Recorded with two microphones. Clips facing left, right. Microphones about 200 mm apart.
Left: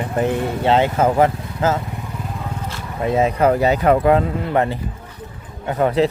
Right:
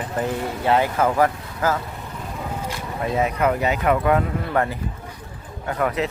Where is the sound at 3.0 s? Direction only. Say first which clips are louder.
Left 5 dB; 25° left (ahead or behind).